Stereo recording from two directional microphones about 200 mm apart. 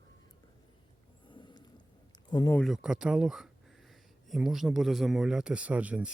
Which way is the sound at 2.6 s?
Centre (ahead or behind).